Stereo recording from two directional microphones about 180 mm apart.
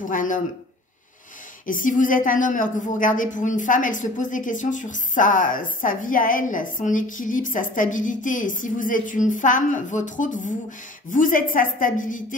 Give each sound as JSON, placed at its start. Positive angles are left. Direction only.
{"t": 0.1, "sound": "a woman's voice", "side_deg": 50}
{"t": 1.7, "sound": "a woman's voice", "side_deg": 45}